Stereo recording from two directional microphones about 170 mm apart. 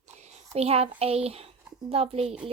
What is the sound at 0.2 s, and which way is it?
A child's voice, 40° right (ahead or behind).